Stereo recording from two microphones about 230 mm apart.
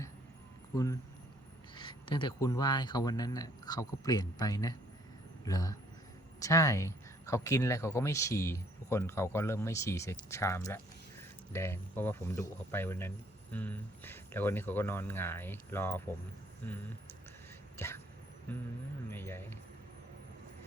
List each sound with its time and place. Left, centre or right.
1.7 s speech: left
17.7 s vehicle: centre
18.5 s speech: centre
19.1 s a sound: centre